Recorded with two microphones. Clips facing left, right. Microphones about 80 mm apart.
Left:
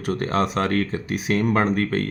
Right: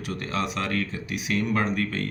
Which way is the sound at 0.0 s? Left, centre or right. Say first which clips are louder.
Left 7 dB; left.